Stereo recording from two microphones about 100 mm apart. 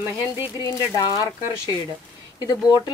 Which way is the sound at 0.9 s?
40° left (ahead or behind).